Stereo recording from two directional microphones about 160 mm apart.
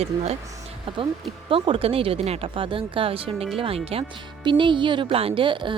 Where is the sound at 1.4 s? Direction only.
35° right (ahead or behind).